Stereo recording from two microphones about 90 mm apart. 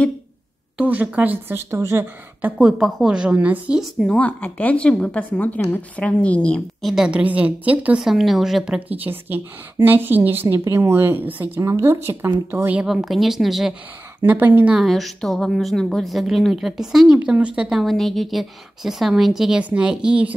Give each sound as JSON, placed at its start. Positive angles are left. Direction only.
{"t": 0.7, "sound": "a woman's voice", "side_deg": -15}
{"t": 2.8, "sound": "a woman's voice", "side_deg": -5}
{"t": 4.1, "sound": "a woman's voice", "side_deg": 15}
{"t": 6.8, "sound": "a woman's voice", "side_deg": 0}
{"t": 7.1, "sound": "a woman's voice", "side_deg": -15}
{"t": 8.0, "sound": "a woman's voice", "side_deg": 0}
{"t": 8.7, "sound": "a woman's voice", "side_deg": -20}
{"t": 11.6, "sound": "a woman's voice", "side_deg": -30}
{"t": 12.7, "sound": "a woman's voice", "side_deg": -5}
{"t": 14.2, "sound": "a woman's voice", "side_deg": -20}
{"t": 14.8, "sound": "a woman's voice", "side_deg": 0}